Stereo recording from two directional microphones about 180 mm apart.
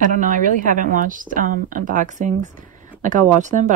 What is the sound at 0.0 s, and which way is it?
A woman's voice, 45° right (ahead or behind).